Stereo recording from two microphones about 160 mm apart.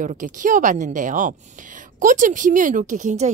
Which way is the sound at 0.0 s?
55° right (ahead or behind).